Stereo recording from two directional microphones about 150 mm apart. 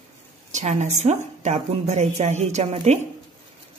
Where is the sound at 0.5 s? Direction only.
55° right (ahead or behind).